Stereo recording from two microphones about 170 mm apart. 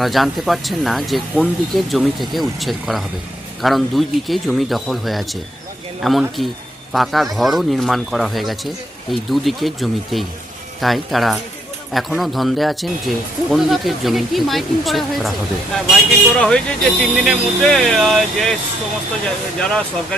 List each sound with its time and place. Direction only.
0.0 s speech: centre (ahead or behind)